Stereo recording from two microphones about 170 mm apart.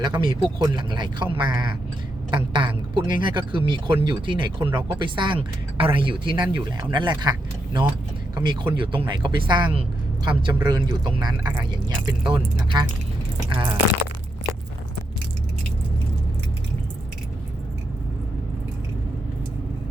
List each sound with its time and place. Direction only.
0.0 s speech: 25° right (ahead or behind)
4.7 s speech: 15° right (ahead or behind)
4.9 s speech: 30° right (ahead or behind)